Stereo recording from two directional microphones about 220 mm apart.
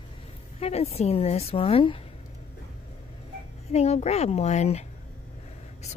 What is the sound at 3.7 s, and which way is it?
A woman's voice, 30° left (ahead or behind).